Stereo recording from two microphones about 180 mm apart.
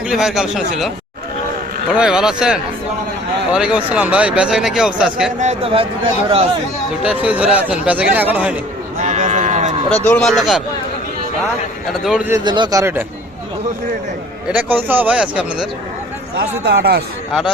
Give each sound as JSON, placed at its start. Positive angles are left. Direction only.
{"t": 0.1, "sound": "a man's voice", "side_deg": 0}
{"t": 1.9, "sound": "a man's voice", "side_deg": -5}
{"t": 5.4, "sound": "a man's voice", "side_deg": -35}
{"t": 7.0, "sound": "speech", "side_deg": -5}
{"t": 9.0, "sound": "sheep", "side_deg": -40}
{"t": 10.1, "sound": "a man's voice", "side_deg": 5}
{"t": 12.0, "sound": "a man's voice", "side_deg": -5}
{"t": 12.3, "sound": "speech", "side_deg": -25}
{"t": 12.8, "sound": "speech", "side_deg": -10}
{"t": 14.5, "sound": "speech", "side_deg": -10}
{"t": 16.6, "sound": "speech", "side_deg": -65}